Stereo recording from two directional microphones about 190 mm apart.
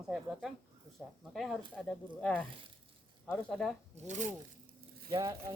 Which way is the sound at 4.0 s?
40° right (ahead or behind).